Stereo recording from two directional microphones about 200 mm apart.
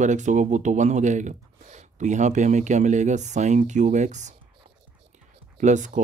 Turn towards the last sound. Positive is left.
turn(degrees=-35)  # may be behind; listen again after turning